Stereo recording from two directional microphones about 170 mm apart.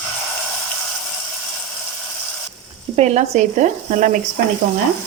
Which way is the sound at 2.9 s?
40° right (ahead or behind).